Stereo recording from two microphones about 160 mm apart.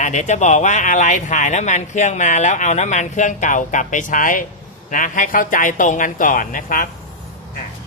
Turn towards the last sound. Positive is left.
turn(degrees=55)  # may be behind; listen again after turning